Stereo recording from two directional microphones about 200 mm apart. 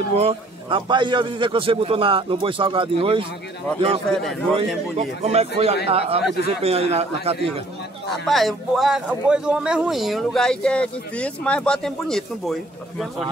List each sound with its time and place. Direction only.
0.1 s a man's voice: 30° right (ahead or behind)
4.9 s a man's voice: 30° right (ahead or behind)
8.3 s speech: centre (ahead or behind)